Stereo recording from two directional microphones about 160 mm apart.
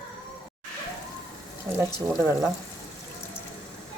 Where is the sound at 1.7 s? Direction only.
20° right (ahead or behind).